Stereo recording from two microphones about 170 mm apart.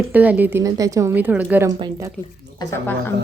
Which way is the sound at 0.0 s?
10° right (ahead or behind).